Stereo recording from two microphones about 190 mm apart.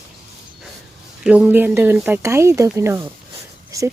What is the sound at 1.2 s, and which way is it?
Speech, 5° right (ahead or behind).